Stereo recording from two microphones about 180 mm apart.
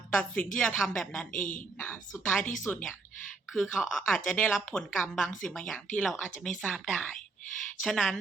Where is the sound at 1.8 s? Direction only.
10° left (ahead or behind).